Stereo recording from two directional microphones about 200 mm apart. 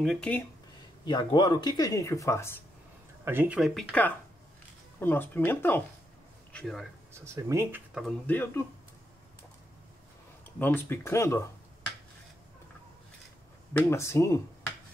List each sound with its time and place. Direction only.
0.0 s speech: centre (ahead or behind)
1.0 s speech: 20° left (ahead or behind)
3.3 s speech: 10° right (ahead or behind)
7.2 s speech: 15° right (ahead or behind)
8.3 s speech: 10° left (ahead or behind)
10.6 s speech: 10° left (ahead or behind)
13.7 s speech: 15° left (ahead or behind)